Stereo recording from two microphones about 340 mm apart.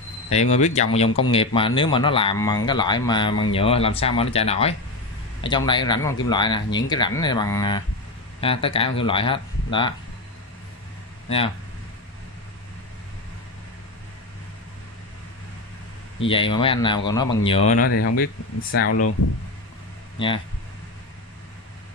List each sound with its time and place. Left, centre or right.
0.3 s speech: centre
11.2 s speech: centre
16.3 s speech: centre
18.7 s speech: left